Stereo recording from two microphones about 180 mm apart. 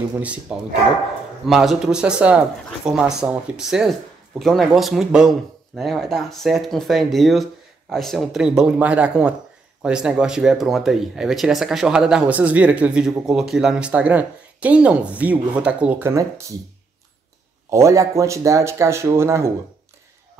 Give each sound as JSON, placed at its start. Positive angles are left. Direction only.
{"t": 0.2, "sound": "speech", "side_deg": -5}
{"t": 17.6, "sound": "speech", "side_deg": -15}